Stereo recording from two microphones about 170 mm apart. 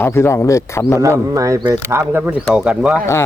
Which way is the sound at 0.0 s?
15° left (ahead or behind).